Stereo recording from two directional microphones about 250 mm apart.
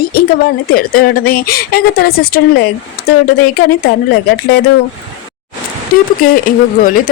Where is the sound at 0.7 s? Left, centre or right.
Left.